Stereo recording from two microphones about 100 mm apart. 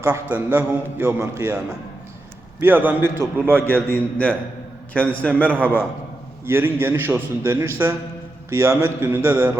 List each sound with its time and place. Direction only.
0.0 s a man's voice: 20° right (ahead or behind)
3.8 s a man's voice: 10° left (ahead or behind)
5.5 s a man's voice: 20° right (ahead or behind)